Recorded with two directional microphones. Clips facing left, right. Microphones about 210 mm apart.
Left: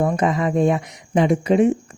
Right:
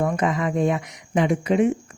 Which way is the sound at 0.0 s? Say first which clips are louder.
Left 3 dB; 30° left (ahead or behind).